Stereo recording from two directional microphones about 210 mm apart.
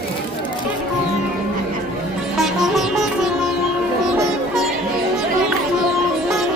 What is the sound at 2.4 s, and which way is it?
Sitar, centre (ahead or behind).